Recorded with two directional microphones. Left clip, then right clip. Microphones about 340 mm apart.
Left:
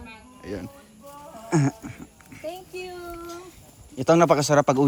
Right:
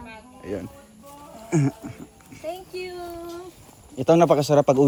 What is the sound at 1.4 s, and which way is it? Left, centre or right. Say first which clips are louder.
Music: even; centre.